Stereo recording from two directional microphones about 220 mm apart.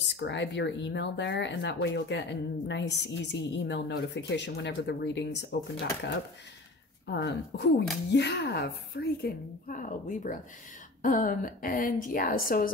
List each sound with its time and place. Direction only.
0.1 s a woman's voice: 55° left (ahead or behind)